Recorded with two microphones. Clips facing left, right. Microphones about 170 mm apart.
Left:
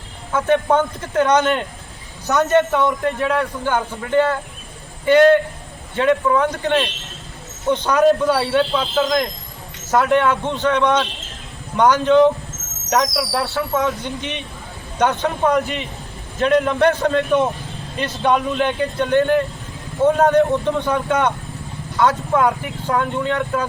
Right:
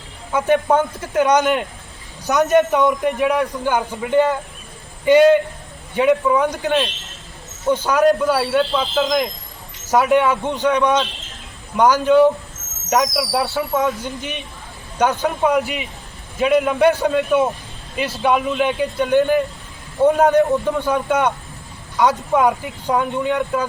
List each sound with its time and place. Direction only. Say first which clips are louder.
0.3 s a man's voice: even; 10° right (ahead or behind)
13.3 s a man's voice: right 2 dB; 15° right (ahead or behind)